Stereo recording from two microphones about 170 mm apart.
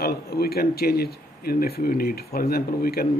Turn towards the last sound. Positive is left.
turn(degrees=60)  # may be behind; listen again after turning